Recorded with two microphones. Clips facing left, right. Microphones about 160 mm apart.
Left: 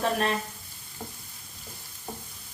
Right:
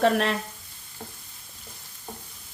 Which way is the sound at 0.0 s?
70° right (ahead or behind).